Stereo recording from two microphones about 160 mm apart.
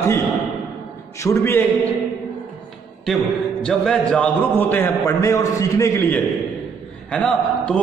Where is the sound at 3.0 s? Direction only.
5° left (ahead or behind); by 6.2 s 20° left (ahead or behind).